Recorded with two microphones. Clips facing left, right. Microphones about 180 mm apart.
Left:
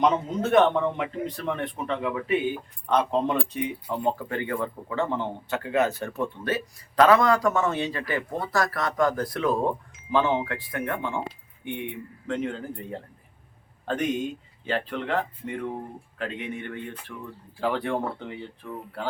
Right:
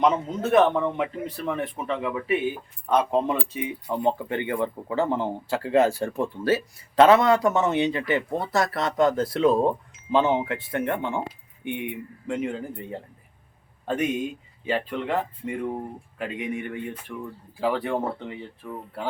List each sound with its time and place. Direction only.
0.0 s a man's voice: centre (ahead or behind)
3.8 s a man's voice: 15° right (ahead or behind)